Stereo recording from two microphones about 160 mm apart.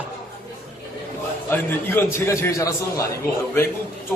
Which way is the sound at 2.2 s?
15° left (ahead or behind).